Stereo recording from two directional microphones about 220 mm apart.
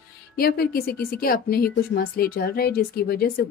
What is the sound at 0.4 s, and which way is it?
A woman's voice, 45° left (ahead or behind).